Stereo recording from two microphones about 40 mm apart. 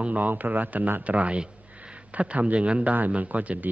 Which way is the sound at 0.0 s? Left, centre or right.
Right.